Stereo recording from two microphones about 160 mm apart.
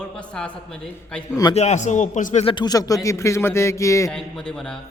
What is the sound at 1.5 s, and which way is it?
Speech, 45° left (ahead or behind).